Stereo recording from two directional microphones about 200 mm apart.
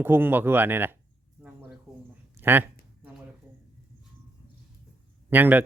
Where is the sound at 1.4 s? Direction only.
5° right (ahead or behind).